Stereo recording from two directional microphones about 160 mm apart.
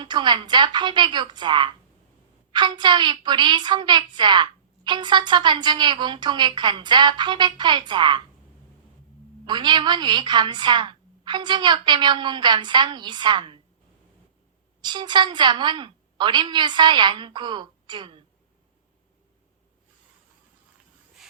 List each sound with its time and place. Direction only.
0.0 s a woman's voice: 30° right (ahead or behind)
9.5 s a woman's voice: 30° right (ahead or behind)
14.8 s a woman's voice: 25° right (ahead or behind)